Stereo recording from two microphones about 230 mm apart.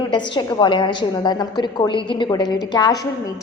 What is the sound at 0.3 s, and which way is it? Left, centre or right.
A woman's voice, centre.